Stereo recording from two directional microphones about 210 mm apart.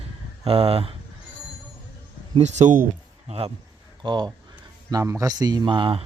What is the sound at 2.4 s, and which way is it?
Speech, 35° right (ahead or behind).